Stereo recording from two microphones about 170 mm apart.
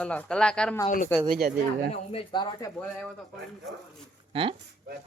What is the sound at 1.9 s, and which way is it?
Speech, 35° left (ahead or behind).